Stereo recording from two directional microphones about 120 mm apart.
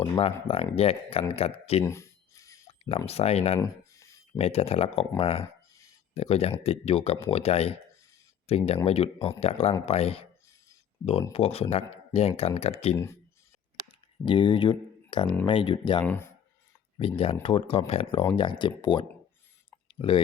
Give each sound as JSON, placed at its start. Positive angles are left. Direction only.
{"t": 0.0, "sound": "speech", "side_deg": 50}
{"t": 1.8, "sound": "a sound", "side_deg": 25}
{"t": 3.1, "sound": "speech", "side_deg": 60}
{"t": 3.6, "sound": "a sound", "side_deg": 25}
{"t": 4.4, "sound": "speech", "side_deg": 60}
{"t": 11.3, "sound": "speech", "side_deg": 55}
{"t": 14.3, "sound": "speech", "side_deg": 45}
{"t": 16.0, "sound": "speech", "side_deg": 20}
{"t": 17.0, "sound": "speech", "side_deg": 50}
{"t": 18.6, "sound": "speech", "side_deg": 40}